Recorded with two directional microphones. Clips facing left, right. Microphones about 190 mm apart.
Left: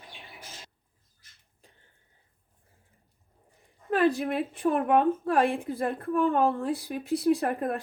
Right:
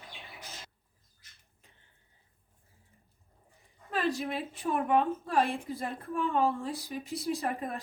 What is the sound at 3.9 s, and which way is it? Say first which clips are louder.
A woman's voice: left 7 dB; 55° left (ahead or behind).